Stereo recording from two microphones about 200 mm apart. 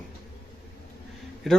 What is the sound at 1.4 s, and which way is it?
Speech, centre (ahead or behind).